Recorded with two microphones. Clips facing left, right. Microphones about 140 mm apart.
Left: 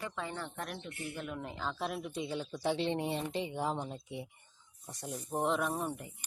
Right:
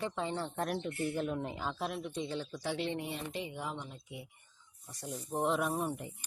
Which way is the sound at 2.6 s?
25° left (ahead or behind).